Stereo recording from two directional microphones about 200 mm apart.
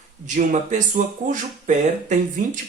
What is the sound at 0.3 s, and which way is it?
Speech, 35° right (ahead or behind).